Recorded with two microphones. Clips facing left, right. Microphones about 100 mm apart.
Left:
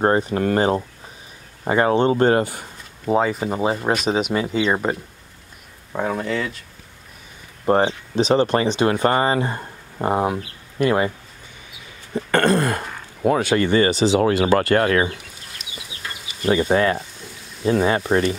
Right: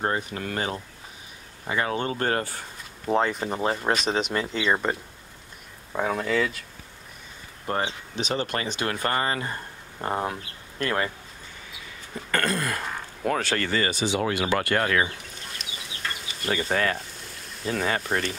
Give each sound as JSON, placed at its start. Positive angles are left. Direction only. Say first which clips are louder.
{"t": 0.0, "sound": "speech", "louder": "left 10 dB", "side_deg": 40}
{"t": 1.9, "sound": "speech", "louder": "left 12 dB", "side_deg": 25}
{"t": 3.1, "sound": "speech", "louder": "left 4 dB", "side_deg": 5}
{"t": 5.9, "sound": "speech", "louder": "left 2 dB", "side_deg": 5}
{"t": 7.6, "sound": "speech", "louder": "left 10 dB", "side_deg": 35}
{"t": 12.2, "sound": "throat clearing", "louder": "left 9 dB", "side_deg": 30}
{"t": 13.2, "sound": "speech", "louder": "left 8 dB", "side_deg": 10}
{"t": 16.0, "sound": "insect", "louder": "right 1 dB", "side_deg": 10}
{"t": 16.6, "sound": "speech", "louder": "left 7 dB", "side_deg": 25}